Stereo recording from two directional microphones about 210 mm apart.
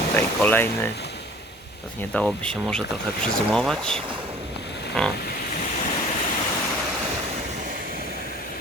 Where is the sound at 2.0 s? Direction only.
5° left (ahead or behind).